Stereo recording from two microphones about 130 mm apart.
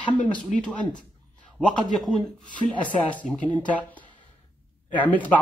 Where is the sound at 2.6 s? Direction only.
10° left (ahead or behind).